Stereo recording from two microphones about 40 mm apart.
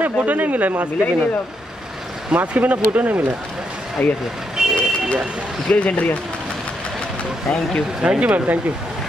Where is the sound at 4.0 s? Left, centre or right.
Left.